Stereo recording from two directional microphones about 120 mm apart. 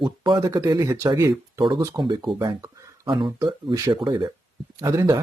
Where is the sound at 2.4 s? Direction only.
35° right (ahead or behind).